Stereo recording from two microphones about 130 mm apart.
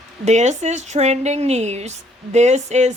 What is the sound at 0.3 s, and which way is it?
A woman's voice, 60° right (ahead or behind).